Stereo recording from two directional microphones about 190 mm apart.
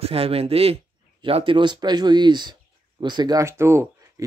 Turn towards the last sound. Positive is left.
turn(degrees=-15)  # may be behind; listen again after turning